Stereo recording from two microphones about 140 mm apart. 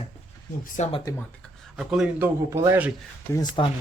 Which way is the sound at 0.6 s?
65° left (ahead or behind).